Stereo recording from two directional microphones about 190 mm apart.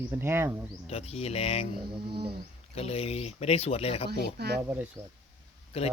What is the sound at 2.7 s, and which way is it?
Speech, 35° left (ahead or behind).